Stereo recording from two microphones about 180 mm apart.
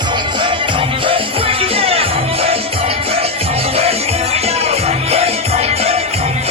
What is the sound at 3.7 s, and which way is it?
Music, 35° right (ahead or behind).